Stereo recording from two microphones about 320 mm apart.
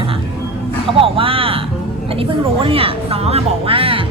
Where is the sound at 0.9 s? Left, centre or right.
Centre.